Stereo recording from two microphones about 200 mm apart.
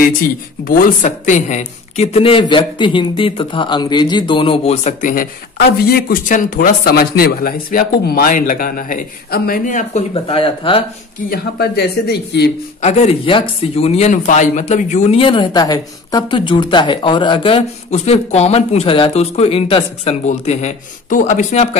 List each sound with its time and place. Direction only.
0.7 s speech: 45° left (ahead or behind); by 10.8 s 25° left (ahead or behind)
11.2 s speech: 50° left (ahead or behind)
12.8 s speech: 35° left (ahead or behind)